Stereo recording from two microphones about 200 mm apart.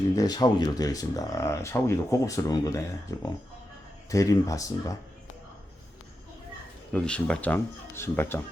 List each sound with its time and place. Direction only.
0.2 s speech: 20° left (ahead or behind)
4.1 s speech: 15° left (ahead or behind)
6.9 s speech: 5° left (ahead or behind)